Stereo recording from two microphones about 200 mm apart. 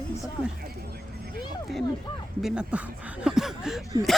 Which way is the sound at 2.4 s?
5° right (ahead or behind).